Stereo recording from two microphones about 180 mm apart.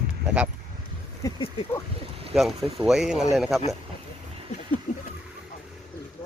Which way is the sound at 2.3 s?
Centre (ahead or behind).